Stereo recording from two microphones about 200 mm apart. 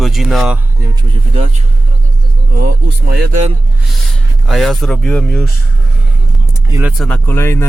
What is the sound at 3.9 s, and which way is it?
Speech, centre (ahead or behind).